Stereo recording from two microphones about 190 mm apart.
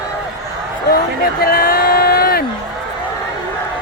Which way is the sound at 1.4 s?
50° left (ahead or behind).